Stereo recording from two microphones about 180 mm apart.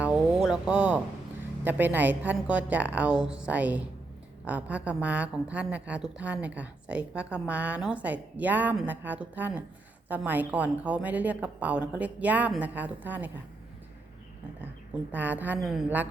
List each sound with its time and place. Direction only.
0.0 s a sound: 5° right (ahead or behind)
1.6 s a woman's voice: 10° right (ahead or behind)
15.1 s a woman's voice: 10° right (ahead or behind)